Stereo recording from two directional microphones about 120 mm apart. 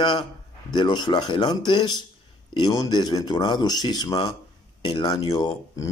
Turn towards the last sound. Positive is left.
turn(degrees=35)  # may be behind; listen again after turning